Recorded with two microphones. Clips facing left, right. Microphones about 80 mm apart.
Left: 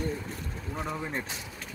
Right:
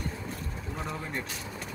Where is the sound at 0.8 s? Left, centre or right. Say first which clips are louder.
Left 2 dB; centre.